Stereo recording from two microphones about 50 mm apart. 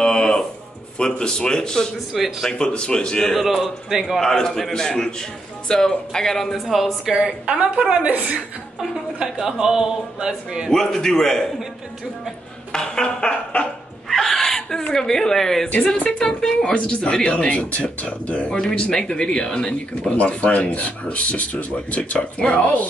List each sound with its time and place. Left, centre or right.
0.0 s a sound: centre
0.9 s speech: centre
2.1 s a man's voice: centre
2.6 s speech: centre
3.3 s a man's voice: centre
4.2 s speech: centre
7.4 s a woman's voice: right
9.2 s a man's voice: centre
10.7 s speech: centre
12.7 s speech: centre
14.0 s a sound: centre
14.8 s speech: centre
20.2 s speech: left